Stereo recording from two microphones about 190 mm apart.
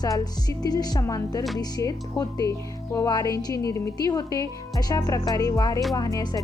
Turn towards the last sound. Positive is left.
turn(degrees=20)  # may be behind; listen again after turning